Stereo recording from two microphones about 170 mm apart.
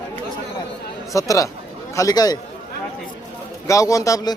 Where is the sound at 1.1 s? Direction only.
20° left (ahead or behind).